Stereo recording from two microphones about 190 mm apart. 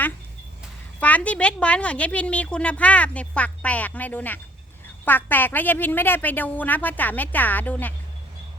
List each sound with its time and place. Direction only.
0.9 s a woman's voice: 10° left (ahead or behind)